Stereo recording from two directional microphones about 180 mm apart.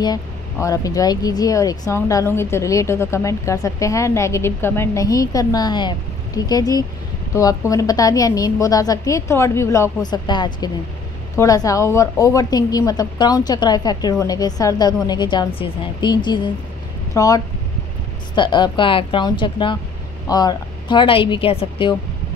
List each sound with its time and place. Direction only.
0.0 s a woman's voice: 20° left (ahead or behind)